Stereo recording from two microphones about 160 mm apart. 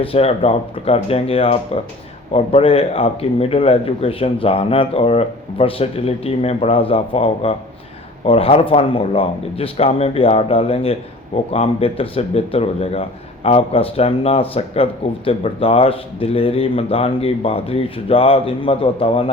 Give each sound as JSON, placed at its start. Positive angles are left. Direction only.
{"t": 0.0, "sound": "speech", "side_deg": 35}